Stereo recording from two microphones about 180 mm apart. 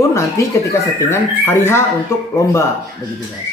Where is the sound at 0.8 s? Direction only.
15° left (ahead or behind).